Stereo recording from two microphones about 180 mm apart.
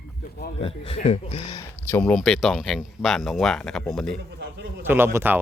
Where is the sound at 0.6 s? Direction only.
30° left (ahead or behind).